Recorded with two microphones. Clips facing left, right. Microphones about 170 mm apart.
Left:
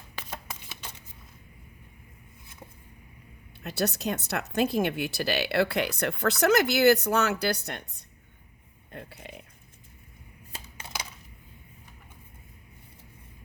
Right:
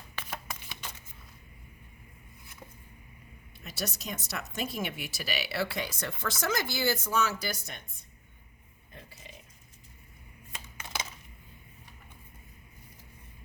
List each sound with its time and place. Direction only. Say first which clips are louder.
3.6 s speech: left 9 dB; 65° left (ahead or behind)
8.9 s burping: left 8 dB; 65° left (ahead or behind)